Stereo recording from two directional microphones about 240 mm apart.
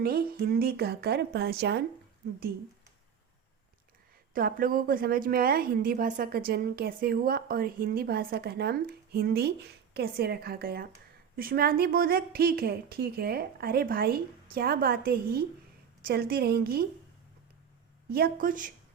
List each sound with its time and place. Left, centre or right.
0.0 s a woman's voice: right
4.4 s a woman's voice: right
18.1 s a woman's voice: right